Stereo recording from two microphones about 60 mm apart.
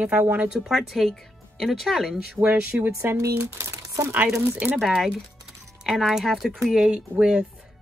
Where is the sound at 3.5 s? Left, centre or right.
Right.